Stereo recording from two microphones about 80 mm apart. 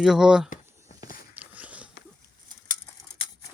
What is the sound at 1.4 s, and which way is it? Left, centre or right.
Biting, centre.